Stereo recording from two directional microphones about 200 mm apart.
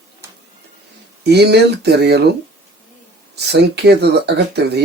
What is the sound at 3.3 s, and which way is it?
Speech, 55° right (ahead or behind).